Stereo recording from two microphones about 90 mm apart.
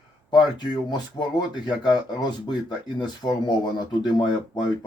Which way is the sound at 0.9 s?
55° left (ahead or behind).